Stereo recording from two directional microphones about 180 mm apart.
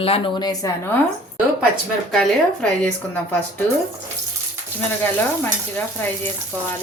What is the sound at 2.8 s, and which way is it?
Speech, 10° left (ahead or behind).